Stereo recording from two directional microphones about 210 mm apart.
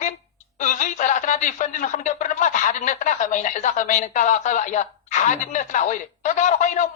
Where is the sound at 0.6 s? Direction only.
35° left (ahead or behind).